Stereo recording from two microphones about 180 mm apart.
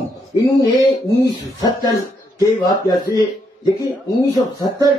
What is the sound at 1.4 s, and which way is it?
Speech, 20° left (ahead or behind).